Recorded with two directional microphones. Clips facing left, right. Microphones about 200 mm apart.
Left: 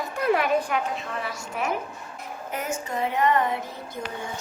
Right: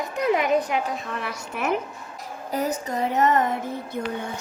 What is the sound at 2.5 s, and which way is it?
Speech, 35° right (ahead or behind).